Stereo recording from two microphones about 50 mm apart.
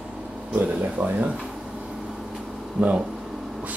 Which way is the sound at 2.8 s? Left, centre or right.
Right.